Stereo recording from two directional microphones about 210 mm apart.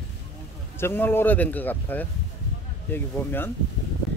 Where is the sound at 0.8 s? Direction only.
10° left (ahead or behind).